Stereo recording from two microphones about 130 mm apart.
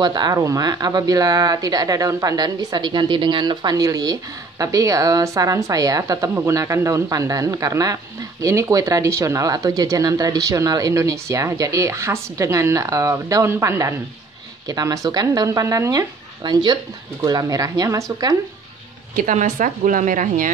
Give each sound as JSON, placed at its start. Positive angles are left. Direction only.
{"t": 0.0, "sound": "speech", "side_deg": -30}
{"t": 19.1, "sound": "speech", "side_deg": -80}